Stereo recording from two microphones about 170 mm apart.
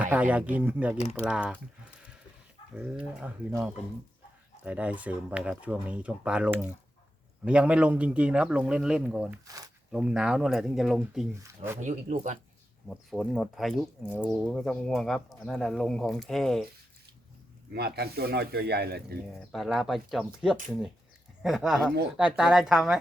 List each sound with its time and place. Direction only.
0.0 s speech: 10° right (ahead or behind)
0.9 s speech: 40° left (ahead or behind)
1.2 s speech: 5° right (ahead or behind)
2.7 s speech: 5° right (ahead or behind)
4.6 s speech: 10° right (ahead or behind)
11.4 s speech: 15° right (ahead or behind)
11.8 s speech: 45° right (ahead or behind)
12.9 s speech: centre (ahead or behind)
17.7 s speech: 70° right (ahead or behind)
19.3 s speech: centre (ahead or behind)